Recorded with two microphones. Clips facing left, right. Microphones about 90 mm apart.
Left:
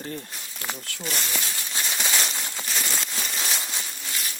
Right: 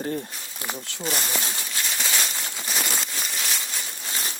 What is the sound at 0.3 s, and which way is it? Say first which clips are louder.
Speech: right 1 dB; 10° right (ahead or behind).